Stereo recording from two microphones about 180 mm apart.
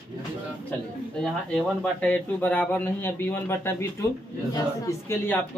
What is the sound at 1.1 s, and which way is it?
Speech, 5° left (ahead or behind).